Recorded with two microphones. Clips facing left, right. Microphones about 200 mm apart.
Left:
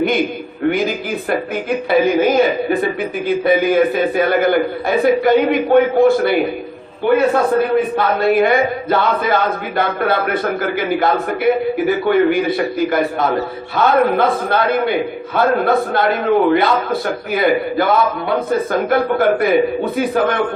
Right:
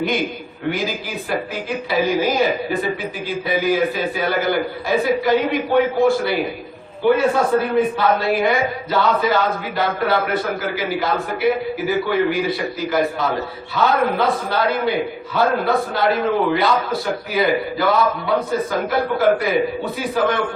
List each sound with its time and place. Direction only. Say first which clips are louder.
0.7 s a man's voice: left 4 dB; 50° left (ahead or behind)